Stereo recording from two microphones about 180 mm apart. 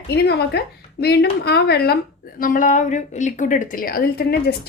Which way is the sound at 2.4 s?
50° left (ahead or behind).